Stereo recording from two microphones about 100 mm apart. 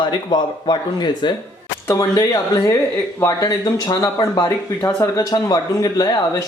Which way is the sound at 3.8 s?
45° left (ahead or behind).